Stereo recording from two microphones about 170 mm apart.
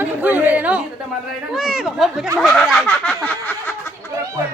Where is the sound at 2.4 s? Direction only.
Centre (ahead or behind).